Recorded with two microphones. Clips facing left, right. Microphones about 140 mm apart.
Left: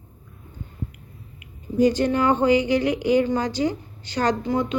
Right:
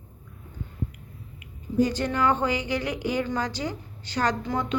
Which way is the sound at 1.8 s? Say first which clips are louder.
Left 5 dB; 15° left (ahead or behind).